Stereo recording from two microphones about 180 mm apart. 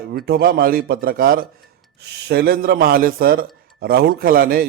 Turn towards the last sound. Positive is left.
turn(degrees=-55)  # may be behind; listen again after turning